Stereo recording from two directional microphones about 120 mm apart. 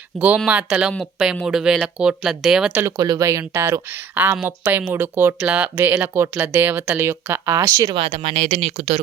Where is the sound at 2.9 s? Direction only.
35° right (ahead or behind).